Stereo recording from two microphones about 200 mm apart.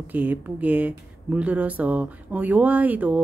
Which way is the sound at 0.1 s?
10° right (ahead or behind).